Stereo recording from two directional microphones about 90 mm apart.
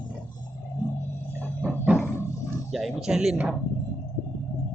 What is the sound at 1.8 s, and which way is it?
Roaring cats, 10° right (ahead or behind).